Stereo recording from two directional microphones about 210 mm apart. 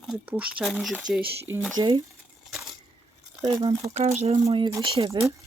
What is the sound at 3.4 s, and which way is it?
Speech, 20° right (ahead or behind).